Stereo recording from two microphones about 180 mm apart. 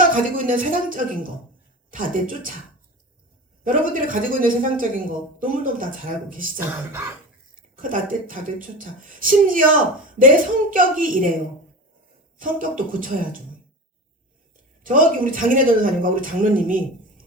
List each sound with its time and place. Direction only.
0.0 s a man's voice: 50° right (ahead or behind)
3.6 s a man's voice: 50° right (ahead or behind)
7.8 s a man's voice: 50° right (ahead or behind)
12.4 s a man's voice: 50° right (ahead or behind)
14.8 s a man's voice: 50° right (ahead or behind)